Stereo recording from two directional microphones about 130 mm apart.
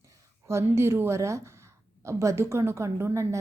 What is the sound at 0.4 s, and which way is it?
A woman's voice, 20° right (ahead or behind).